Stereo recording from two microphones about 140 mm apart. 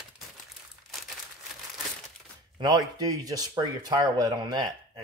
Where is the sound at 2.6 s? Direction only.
30° right (ahead or behind).